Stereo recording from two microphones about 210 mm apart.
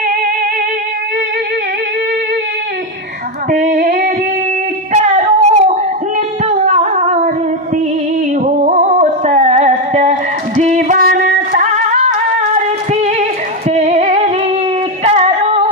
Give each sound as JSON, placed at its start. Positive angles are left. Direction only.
{"t": 3.5, "sound": "female singing", "side_deg": -40}
{"t": 6.4, "sound": "music", "side_deg": -35}
{"t": 8.5, "sound": "music", "side_deg": -35}
{"t": 15.0, "sound": "female singing", "side_deg": -30}